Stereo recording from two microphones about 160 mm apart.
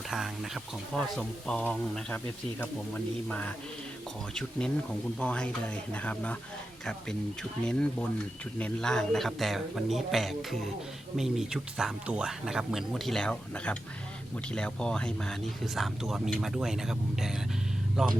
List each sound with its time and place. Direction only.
0.1 s speech: centre (ahead or behind)
5.2 s speech: 5° left (ahead or behind)
7.6 s speech: 5° left (ahead or behind)